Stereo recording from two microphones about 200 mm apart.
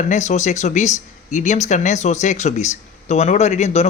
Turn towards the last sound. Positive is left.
turn(degrees=35)  # may be behind; listen again after turning